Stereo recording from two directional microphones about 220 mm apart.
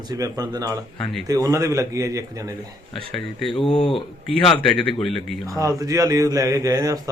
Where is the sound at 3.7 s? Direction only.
25° left (ahead or behind).